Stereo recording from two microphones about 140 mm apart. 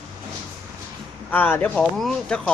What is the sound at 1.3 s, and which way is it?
A man's voice, 10° left (ahead or behind).